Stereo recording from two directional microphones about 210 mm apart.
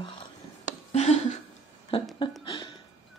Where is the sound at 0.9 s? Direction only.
30° left (ahead or behind).